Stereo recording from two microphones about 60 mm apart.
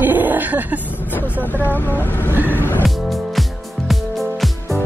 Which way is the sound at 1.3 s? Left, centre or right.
Left.